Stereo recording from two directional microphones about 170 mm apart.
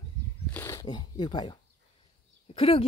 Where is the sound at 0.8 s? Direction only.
25° left (ahead or behind).